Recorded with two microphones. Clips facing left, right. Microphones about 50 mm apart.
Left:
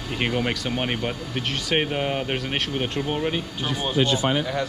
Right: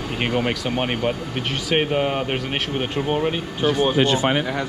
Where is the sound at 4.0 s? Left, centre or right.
Right.